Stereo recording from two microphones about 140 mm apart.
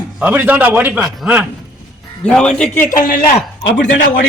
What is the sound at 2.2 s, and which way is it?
Speech, 5° left (ahead or behind).